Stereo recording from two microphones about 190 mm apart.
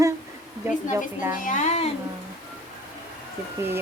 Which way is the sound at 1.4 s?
40° left (ahead or behind).